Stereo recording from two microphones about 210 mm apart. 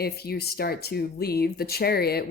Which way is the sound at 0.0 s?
50° left (ahead or behind).